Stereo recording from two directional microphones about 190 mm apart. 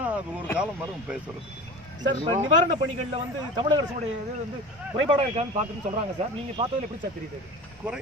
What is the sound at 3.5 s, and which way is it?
Speech, 25° right (ahead or behind).